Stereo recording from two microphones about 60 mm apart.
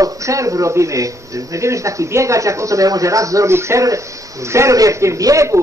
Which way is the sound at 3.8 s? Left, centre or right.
Right.